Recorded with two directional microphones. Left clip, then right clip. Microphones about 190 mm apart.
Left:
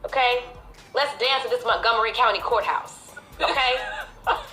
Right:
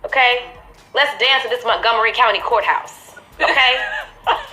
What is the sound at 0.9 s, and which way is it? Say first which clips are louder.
A woman's voice: right 7 dB; 25° right (ahead or behind).